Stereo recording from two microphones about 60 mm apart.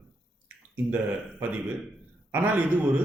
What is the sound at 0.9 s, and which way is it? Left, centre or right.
A man's voice, right.